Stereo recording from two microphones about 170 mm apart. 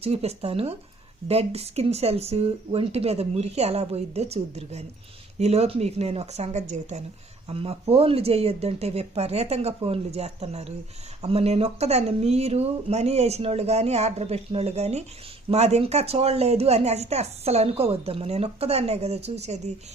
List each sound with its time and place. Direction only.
0.0 s speech: 35° right (ahead or behind)